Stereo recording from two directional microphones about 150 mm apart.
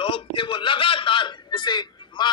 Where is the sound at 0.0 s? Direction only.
35° left (ahead or behind).